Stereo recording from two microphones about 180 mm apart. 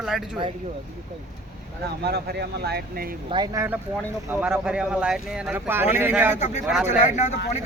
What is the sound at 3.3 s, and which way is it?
Speech, 25° right (ahead or behind).